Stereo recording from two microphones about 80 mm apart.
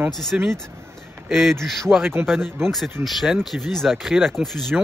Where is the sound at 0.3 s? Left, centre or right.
Centre.